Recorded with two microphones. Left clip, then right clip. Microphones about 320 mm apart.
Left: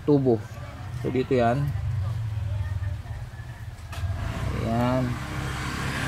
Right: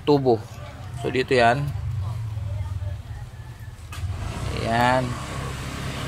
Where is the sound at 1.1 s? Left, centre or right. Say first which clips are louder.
Right 5 dB; right.